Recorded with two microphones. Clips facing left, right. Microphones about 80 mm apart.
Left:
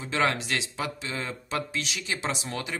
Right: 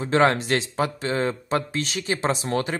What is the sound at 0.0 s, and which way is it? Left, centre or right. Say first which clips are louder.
Speech: right 7 dB; right.